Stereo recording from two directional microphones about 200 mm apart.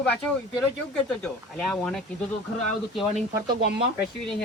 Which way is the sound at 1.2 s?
Centre (ahead or behind).